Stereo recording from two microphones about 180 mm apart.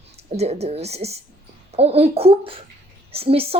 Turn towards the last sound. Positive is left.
turn(degrees=-30)  # may be behind; listen again after turning